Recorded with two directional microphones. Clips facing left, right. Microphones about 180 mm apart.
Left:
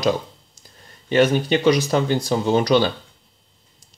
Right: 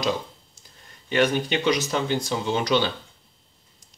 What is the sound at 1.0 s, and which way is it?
Speech, 35° left (ahead or behind).